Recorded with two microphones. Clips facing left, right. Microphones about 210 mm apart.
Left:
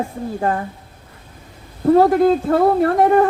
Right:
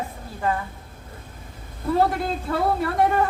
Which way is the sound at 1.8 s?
50° left (ahead or behind).